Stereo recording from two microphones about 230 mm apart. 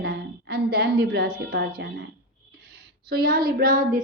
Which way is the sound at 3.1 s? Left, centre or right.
Right.